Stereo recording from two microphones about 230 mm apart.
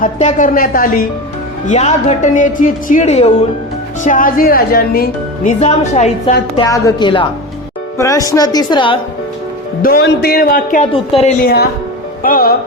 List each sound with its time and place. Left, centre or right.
0.0 s a woman's voice: left
5.5 s a woman's voice: left
6.6 s a woman's voice: centre
9.8 s a woman's voice: left